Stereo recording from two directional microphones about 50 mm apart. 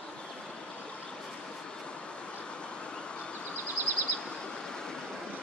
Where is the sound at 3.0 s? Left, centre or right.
Left.